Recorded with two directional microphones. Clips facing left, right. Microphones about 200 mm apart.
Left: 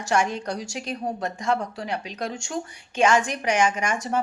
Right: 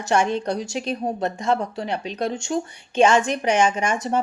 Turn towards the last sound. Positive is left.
turn(degrees=-25)  # may be behind; listen again after turning